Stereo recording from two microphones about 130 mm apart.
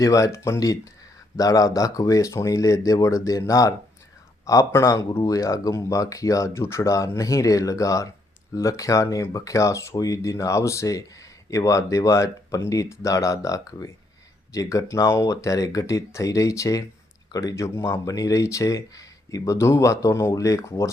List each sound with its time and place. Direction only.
0.0 s speech: 25° left (ahead or behind)